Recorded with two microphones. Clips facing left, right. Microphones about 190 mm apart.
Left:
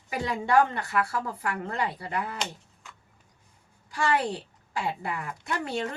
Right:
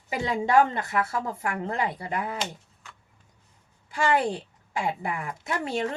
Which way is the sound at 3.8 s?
25° right (ahead or behind).